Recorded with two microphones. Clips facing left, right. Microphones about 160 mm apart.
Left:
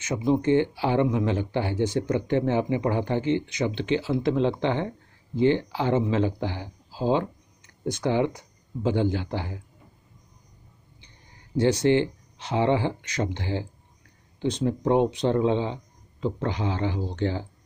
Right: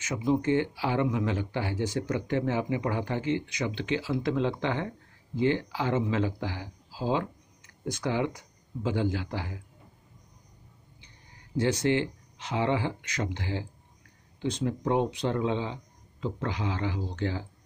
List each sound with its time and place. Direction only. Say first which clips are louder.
0.0 s speech: left 3 dB; 25° left (ahead or behind)
11.5 s speech: left 5 dB; 30° left (ahead or behind)